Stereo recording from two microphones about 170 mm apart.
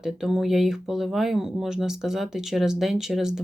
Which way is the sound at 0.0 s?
5° right (ahead or behind).